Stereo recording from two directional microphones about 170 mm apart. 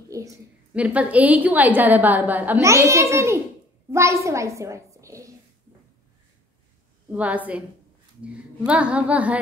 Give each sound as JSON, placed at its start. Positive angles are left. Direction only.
{"t": 0.7, "sound": "a woman's voice", "side_deg": -5}
{"t": 7.1, "sound": "a woman's voice", "side_deg": -10}